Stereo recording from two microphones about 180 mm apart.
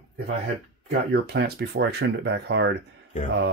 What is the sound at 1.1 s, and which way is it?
Speech, 70° right (ahead or behind).